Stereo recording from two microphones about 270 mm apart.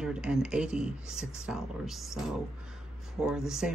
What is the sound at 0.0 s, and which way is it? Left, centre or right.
Speech, centre.